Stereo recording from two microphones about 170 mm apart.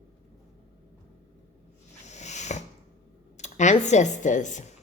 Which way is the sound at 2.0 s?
45° left (ahead or behind).